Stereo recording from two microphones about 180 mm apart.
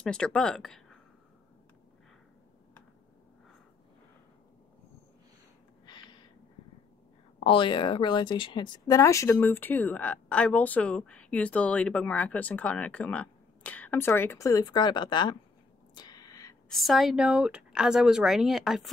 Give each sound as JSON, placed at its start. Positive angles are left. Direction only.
{"t": 0.0, "sound": "speech", "side_deg": 5}
{"t": 5.9, "sound": "gasp", "side_deg": 25}
{"t": 7.3, "sound": "speech", "side_deg": 30}
{"t": 15.9, "sound": "a sound", "side_deg": 20}
{"t": 16.6, "sound": "a woman's voice", "side_deg": 0}